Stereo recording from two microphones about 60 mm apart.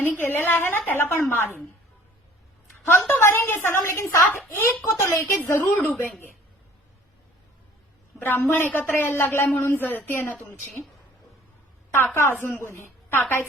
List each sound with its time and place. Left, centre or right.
0.0 s a woman's voice: left
2.8 s a woman's voice: left
6.1 s a woman's voice: left
8.2 s a woman's voice: left
9.5 s a woman's voice: left
10.1 s a woman's voice: left
11.9 s a woman's voice: left